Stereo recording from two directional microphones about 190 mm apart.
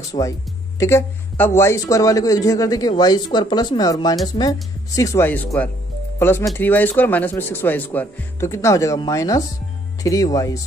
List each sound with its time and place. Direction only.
0.1 s speech: 30° left (ahead or behind)
0.7 s speech: 15° left (ahead or behind)